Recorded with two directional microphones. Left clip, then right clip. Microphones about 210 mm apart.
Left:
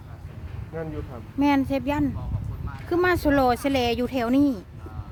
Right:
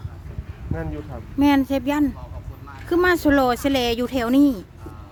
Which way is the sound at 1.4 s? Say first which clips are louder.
Right 3 dB; 5° right (ahead or behind).